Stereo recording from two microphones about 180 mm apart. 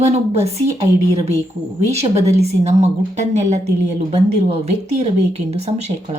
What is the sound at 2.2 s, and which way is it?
A woman's voice, 35° right (ahead or behind).